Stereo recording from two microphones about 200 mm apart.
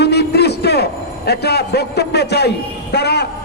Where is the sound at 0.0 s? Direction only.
55° left (ahead or behind).